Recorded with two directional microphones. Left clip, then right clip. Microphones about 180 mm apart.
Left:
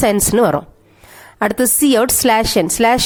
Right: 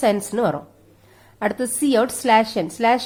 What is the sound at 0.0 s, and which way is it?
A woman's voice, 45° left (ahead or behind).